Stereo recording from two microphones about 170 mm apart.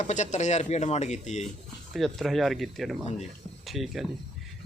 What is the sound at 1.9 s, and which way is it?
Speech, centre (ahead or behind).